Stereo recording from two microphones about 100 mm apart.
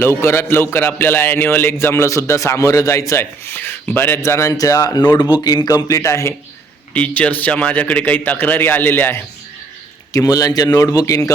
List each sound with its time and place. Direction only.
0.0 s a man's voice: 25° left (ahead or behind)
6.9 s a man's voice: 15° left (ahead or behind)
10.1 s a man's voice: 40° left (ahead or behind)